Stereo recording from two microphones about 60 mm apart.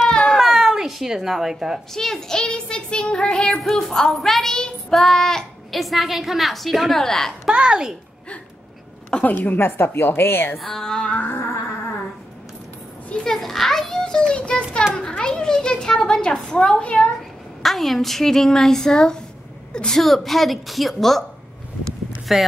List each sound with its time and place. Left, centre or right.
0.3 s cat: centre
2.0 s child singing: centre
4.9 s a woman's voice: centre
7.5 s a child's voice: centre
9.2 s a woman's voice: left
10.6 s speech: centre
13.2 s children playing: centre
15.0 s a sound: centre
17.6 s a woman's voice: centre
22.3 s a woman's voice: centre